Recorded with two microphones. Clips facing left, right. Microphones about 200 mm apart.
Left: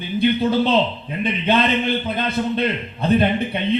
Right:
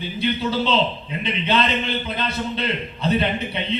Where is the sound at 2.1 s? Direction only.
50° left (ahead or behind).